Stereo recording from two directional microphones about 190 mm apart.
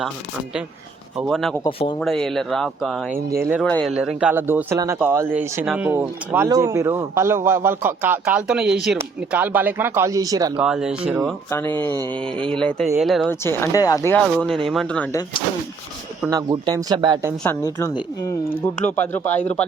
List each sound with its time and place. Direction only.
1.3 s a man's voice: centre (ahead or behind); by 10.6 s 20° right (ahead or behind)
10.6 s speech: 5° right (ahead or behind)
11.9 s speech: 20° right (ahead or behind)
12.1 s speech: 5° left (ahead or behind)
13.4 s speech: 15° left (ahead or behind)
16.3 s speech: 20° right (ahead or behind)
17.7 s speech: 15° left (ahead or behind)